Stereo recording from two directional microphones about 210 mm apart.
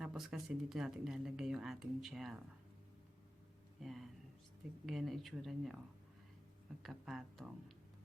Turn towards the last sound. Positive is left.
turn(degrees=0)  # may be behind; listen again after turning